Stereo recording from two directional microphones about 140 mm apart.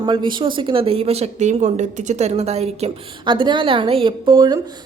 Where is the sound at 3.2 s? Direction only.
35° right (ahead or behind).